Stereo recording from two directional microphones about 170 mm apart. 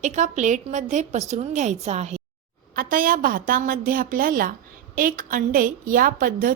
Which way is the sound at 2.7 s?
55° right (ahead or behind).